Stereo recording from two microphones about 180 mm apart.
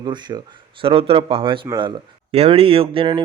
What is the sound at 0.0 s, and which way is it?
Speech, 25° right (ahead or behind).